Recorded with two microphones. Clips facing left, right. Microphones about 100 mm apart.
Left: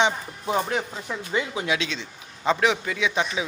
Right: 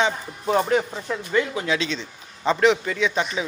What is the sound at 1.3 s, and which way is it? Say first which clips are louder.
Speech: right 3 dB; 15° left (ahead or behind).